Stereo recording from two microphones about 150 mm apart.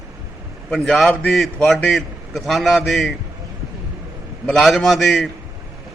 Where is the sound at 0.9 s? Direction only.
5° left (ahead or behind).